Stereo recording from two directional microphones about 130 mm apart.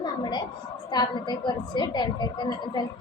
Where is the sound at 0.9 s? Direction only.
35° left (ahead or behind).